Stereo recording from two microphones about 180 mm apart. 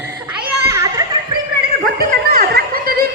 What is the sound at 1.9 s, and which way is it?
Music, 60° right (ahead or behind).